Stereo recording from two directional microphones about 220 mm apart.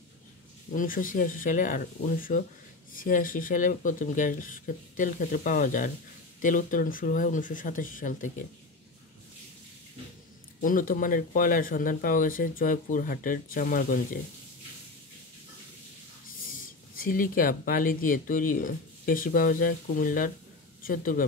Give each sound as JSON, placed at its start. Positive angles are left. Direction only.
{"t": 0.7, "sound": "speech", "side_deg": 40}
{"t": 10.6, "sound": "speech", "side_deg": 40}
{"t": 16.9, "sound": "speech", "side_deg": 40}